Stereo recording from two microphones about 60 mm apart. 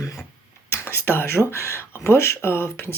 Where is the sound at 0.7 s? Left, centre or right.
Left.